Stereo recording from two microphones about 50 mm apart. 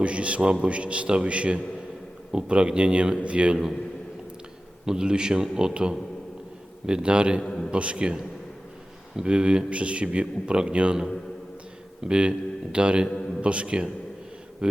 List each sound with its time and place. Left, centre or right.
0.0 s speech: right
4.9 s a man's voice: centre
7.4 s a man's voice: centre
7.7 s speech: right
9.2 s speech: centre
12.0 s speech: centre
13.1 s a sound: centre
13.4 s speech: right